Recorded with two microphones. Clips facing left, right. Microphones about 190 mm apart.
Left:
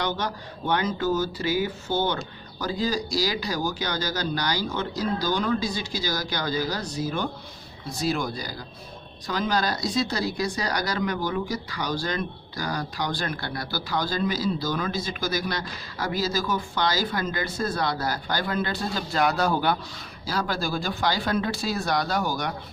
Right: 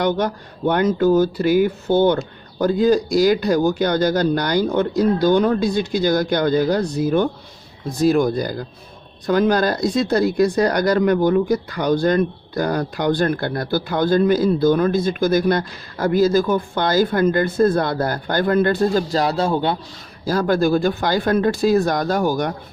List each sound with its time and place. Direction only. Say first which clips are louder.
0.0 s speech: right 9 dB; 50° right (ahead or behind)
19.0 s a man's voice: right 4 dB; 35° right (ahead or behind)
20.2 s speech: right 11 dB; 50° right (ahead or behind)